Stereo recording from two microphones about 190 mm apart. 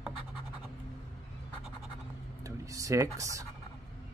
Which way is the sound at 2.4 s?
15° right (ahead or behind).